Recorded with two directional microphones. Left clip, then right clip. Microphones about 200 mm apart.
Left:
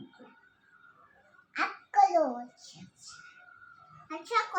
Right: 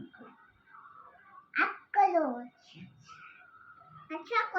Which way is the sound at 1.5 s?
20° left (ahead or behind).